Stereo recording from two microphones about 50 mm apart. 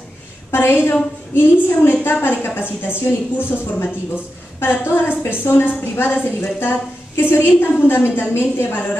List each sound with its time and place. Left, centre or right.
0.5 s a woman's voice: left